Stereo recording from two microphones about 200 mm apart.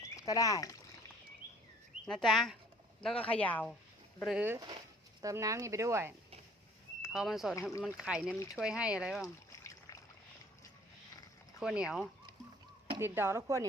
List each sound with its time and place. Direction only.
0.0 s a sound: 15° left (ahead or behind)
2.0 s speech: centre (ahead or behind)
4.2 s speech: 5° right (ahead or behind)
7.0 s speech: 5° right (ahead or behind)
9.5 s a sound: 15° left (ahead or behind)
11.6 s speech: 5° right (ahead or behind)